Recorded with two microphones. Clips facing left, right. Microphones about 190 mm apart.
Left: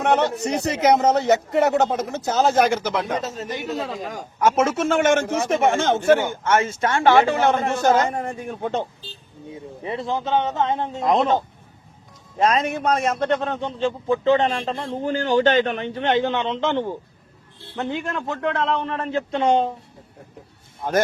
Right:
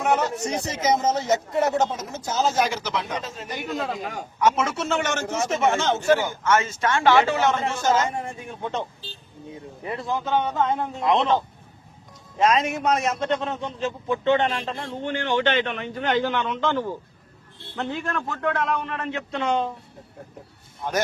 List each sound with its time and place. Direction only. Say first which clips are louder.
0.0 s a man's voice: left 3 dB; 65° left (ahead or behind)
8.1 s a man's voice: left 4 dB; 40° left (ahead or behind)
9.8 s a man's voice: left 2 dB; 25° left (ahead or behind)
11.0 s a man's voice: left 2 dB; 45° left (ahead or behind)
12.4 s a man's voice: left 1 dB; 35° left (ahead or behind)
16.0 s a man's voice: left 2 dB; 25° left (ahead or behind)